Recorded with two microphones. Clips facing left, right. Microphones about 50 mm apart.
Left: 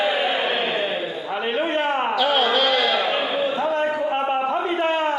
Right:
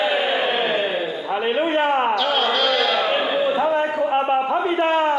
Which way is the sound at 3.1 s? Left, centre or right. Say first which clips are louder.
Right 3 dB; right.